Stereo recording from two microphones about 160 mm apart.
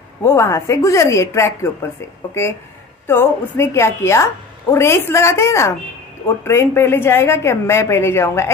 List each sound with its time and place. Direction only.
0.2 s a woman's voice: 15° left (ahead or behind)